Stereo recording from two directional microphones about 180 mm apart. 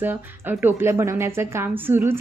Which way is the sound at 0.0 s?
10° right (ahead or behind).